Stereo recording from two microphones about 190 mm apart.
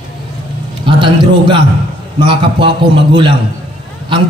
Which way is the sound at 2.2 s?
25° right (ahead or behind).